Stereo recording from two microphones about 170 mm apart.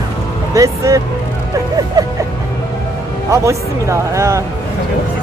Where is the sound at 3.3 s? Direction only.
15° right (ahead or behind).